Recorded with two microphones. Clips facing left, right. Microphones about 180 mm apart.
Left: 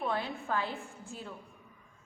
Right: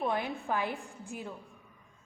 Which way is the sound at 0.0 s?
15° right (ahead or behind).